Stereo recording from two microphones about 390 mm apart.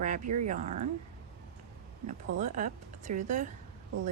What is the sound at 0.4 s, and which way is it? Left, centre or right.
Speech, centre.